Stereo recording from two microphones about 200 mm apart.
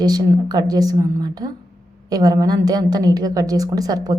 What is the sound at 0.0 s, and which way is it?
A woman's voice, 20° right (ahead or behind).